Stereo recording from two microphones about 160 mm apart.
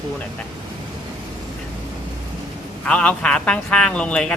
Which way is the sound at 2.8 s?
5° left (ahead or behind).